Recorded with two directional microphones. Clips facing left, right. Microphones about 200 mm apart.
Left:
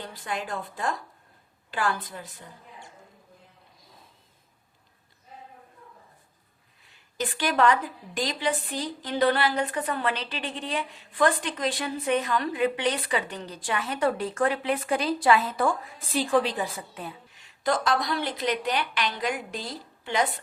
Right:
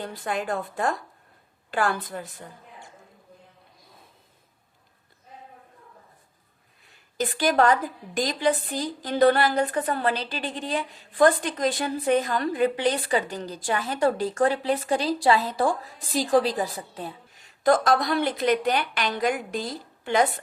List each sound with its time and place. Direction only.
0.3 s a woman's voice: 50° right (ahead or behind)
7.2 s a woman's voice: 40° right (ahead or behind)
17.6 s a woman's voice: 50° right (ahead or behind)